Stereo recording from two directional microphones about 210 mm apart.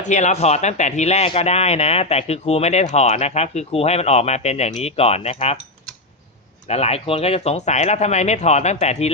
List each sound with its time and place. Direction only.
0.0 s speech: 35° left (ahead or behind)
6.7 s speech: 30° left (ahead or behind)